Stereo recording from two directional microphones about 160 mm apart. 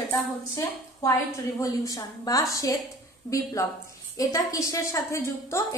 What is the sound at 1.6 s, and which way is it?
A woman's voice, 20° left (ahead or behind).